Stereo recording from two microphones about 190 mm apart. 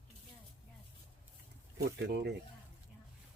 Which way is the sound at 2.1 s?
60° right (ahead or behind).